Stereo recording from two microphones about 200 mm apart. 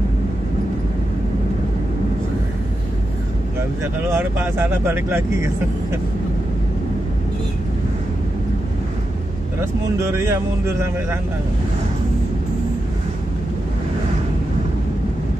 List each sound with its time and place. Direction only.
3.8 s speech: 10° right (ahead or behind)
9.6 s speech: 15° right (ahead or behind)